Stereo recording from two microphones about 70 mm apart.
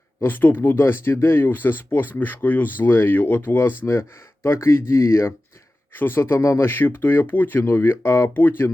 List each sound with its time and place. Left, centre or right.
0.3 s speech: left
4.4 s speech: left